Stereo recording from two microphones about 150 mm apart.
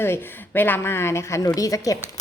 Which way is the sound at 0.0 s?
15° left (ahead or behind).